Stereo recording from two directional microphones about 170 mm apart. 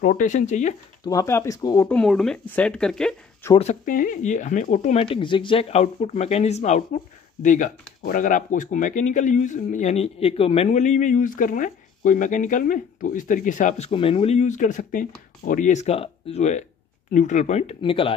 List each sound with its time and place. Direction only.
0.0 s a man's voice: 50° left (ahead or behind)
1.0 s speech: 20° left (ahead or behind)
1.9 s speech: 5° left (ahead or behind)
3.5 s a man's voice: 45° left (ahead or behind)
4.9 s a man's voice: 30° left (ahead or behind)